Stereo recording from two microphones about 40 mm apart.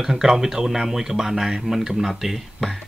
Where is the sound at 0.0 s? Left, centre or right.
Centre.